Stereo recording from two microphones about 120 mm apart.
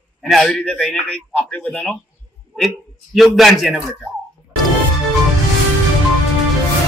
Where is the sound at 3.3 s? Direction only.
Centre (ahead or behind).